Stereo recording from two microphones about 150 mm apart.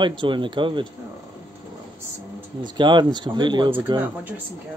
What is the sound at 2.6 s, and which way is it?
Speech, 30° right (ahead or behind).